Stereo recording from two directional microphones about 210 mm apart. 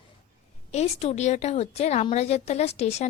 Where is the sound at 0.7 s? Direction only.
30° left (ahead or behind).